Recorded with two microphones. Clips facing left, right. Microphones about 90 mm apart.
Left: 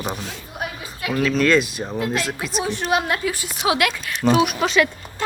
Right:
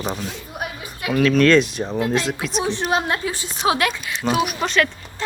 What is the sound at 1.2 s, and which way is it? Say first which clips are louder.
Speech: right 3 dB; 5° left (ahead or behind).